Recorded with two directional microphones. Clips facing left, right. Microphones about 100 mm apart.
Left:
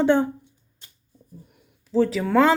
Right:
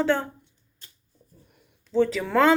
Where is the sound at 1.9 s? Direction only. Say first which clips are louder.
Left 2 dB; 5° left (ahead or behind).